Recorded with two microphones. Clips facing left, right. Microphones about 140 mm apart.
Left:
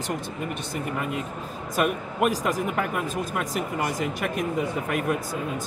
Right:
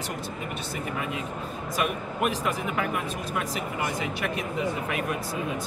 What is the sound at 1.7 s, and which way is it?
A man's voice, 45° left (ahead or behind).